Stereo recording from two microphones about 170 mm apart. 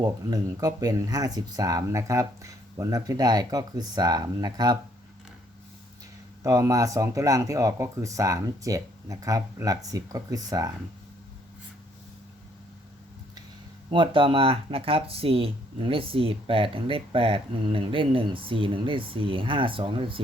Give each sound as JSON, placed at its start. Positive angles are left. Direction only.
{"t": 0.0, "sound": "speech", "side_deg": -20}
{"t": 6.4, "sound": "speech", "side_deg": -20}
{"t": 13.9, "sound": "speech", "side_deg": -30}